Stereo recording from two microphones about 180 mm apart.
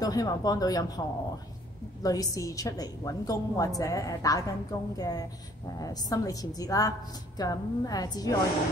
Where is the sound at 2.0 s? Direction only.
20° left (ahead or behind).